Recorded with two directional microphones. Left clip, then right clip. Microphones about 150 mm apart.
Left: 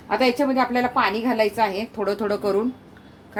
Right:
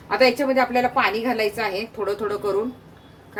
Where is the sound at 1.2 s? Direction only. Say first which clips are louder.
Left 2 dB; 40° left (ahead or behind).